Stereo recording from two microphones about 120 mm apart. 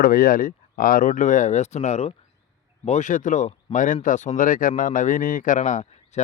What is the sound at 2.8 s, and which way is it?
Speech, 75° left (ahead or behind).